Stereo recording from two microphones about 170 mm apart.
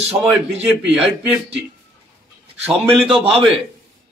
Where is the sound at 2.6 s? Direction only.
5° right (ahead or behind).